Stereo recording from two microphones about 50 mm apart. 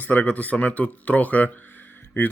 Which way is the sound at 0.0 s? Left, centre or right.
Left.